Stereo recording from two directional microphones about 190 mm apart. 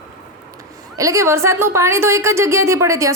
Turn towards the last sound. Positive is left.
turn(degrees=-15)  # may be behind; listen again after turning